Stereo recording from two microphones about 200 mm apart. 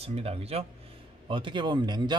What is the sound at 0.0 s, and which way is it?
A man's voice, 30° right (ahead or behind).